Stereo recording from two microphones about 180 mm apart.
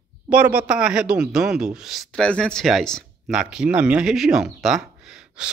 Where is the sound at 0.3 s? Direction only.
10° right (ahead or behind).